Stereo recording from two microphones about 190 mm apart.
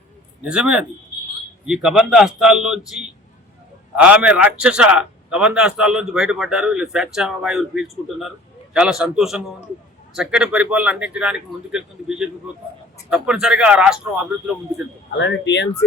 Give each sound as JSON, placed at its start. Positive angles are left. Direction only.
{"t": 0.4, "sound": "a man's voice", "side_deg": -5}
{"t": 15.2, "sound": "speech", "side_deg": 70}